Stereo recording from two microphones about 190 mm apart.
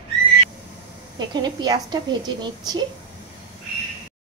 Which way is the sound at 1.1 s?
20° right (ahead or behind).